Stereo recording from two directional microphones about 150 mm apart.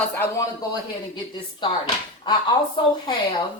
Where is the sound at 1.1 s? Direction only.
30° left (ahead or behind).